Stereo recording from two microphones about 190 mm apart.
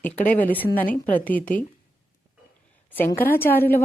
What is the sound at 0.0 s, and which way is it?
Speech, 10° left (ahead or behind).